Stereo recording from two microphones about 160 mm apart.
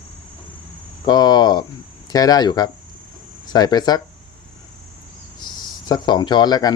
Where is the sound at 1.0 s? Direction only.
25° left (ahead or behind).